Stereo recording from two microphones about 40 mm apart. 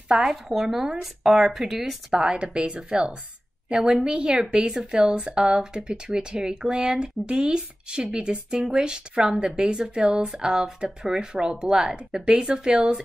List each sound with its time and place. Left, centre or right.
0.1 s speech: right
0.6 s speech: centre
2.1 s speech: right